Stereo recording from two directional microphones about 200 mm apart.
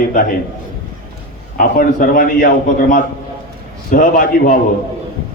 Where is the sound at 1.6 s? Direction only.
45° left (ahead or behind).